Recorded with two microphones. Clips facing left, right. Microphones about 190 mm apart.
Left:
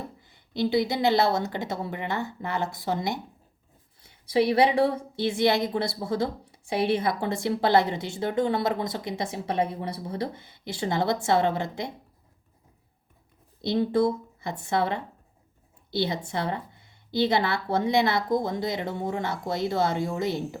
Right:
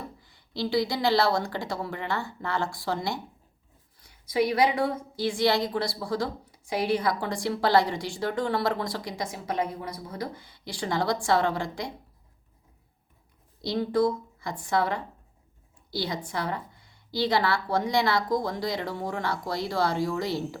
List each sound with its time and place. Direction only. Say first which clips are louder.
0.2 s a woman's voice: left 5 dB; 20° left (ahead or behind)
13.6 s a woman's voice: left 2 dB; 25° left (ahead or behind)